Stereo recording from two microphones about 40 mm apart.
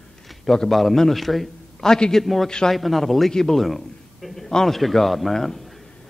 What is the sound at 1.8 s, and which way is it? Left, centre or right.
Speech, centre.